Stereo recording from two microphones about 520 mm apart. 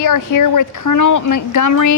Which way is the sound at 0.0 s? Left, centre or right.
Left.